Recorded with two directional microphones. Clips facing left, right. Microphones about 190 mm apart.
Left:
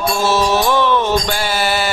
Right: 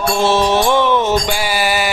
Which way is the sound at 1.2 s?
10° right (ahead or behind).